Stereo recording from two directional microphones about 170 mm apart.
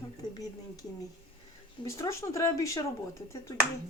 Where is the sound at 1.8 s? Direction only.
15° left (ahead or behind).